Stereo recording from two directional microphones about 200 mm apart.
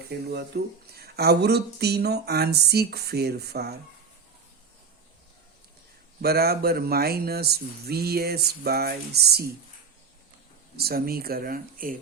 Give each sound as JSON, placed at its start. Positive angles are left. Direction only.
{"t": 0.1, "sound": "speech", "side_deg": -55}
{"t": 6.2, "sound": "speech", "side_deg": -50}
{"t": 10.8, "sound": "speech", "side_deg": -50}